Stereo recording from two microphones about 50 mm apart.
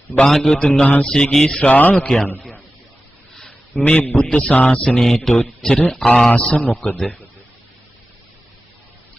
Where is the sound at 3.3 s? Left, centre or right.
Centre.